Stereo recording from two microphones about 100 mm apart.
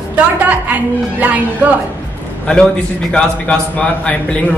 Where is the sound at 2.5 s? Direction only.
10° left (ahead or behind).